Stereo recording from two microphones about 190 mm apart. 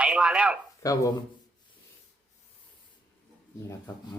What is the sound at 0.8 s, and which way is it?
Speech, 15° left (ahead or behind).